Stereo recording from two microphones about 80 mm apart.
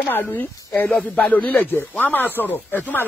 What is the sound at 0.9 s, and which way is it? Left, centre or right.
Speech, centre.